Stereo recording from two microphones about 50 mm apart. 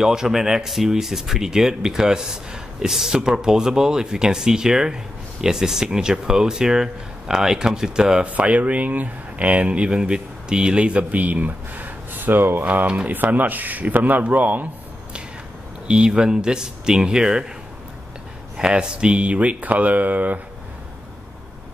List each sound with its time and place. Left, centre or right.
0.0 s speech: centre
8.3 s speech: right
12.6 s speech: right
15.9 s speech: centre
18.6 s speech: centre; by 20.3 s right